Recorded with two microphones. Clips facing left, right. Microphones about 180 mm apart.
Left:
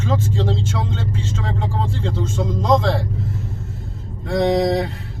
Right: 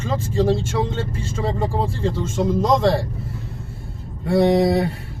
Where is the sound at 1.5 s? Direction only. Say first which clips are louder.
Right 2 dB; 10° right (ahead or behind).